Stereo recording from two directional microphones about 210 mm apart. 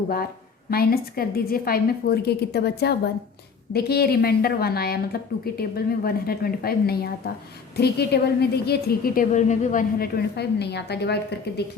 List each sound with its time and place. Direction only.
0.7 s a woman's voice: 45° left (ahead or behind)